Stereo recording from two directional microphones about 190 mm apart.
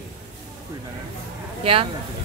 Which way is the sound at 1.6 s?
30° right (ahead or behind).